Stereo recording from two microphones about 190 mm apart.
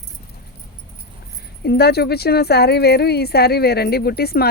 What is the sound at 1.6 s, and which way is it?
Speech, 55° left (ahead or behind).